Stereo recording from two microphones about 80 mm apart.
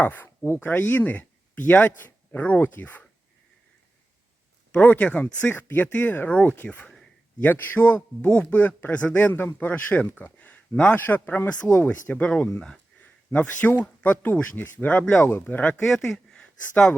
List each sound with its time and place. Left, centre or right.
0.0 s speech: left
4.7 s speech: centre
6.8 s a sound: centre
7.4 s speech: left
15.8 s speech: centre